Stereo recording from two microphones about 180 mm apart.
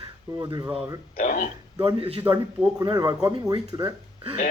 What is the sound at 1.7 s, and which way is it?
Speech, 25° right (ahead or behind).